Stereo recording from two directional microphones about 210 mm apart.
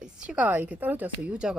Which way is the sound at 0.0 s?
5° right (ahead or behind).